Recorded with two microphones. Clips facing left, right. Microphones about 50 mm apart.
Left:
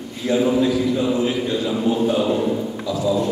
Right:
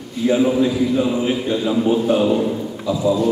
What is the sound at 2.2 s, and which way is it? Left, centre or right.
Speech, centre.